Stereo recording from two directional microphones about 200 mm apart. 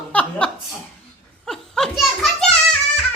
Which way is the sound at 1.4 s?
Centre (ahead or behind).